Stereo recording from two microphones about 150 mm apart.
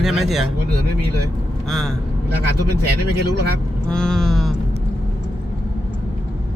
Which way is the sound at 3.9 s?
5° left (ahead or behind).